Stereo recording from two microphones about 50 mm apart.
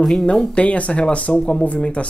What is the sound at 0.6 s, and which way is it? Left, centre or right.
Speech, left.